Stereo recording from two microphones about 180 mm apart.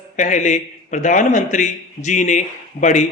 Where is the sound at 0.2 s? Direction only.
40° left (ahead or behind).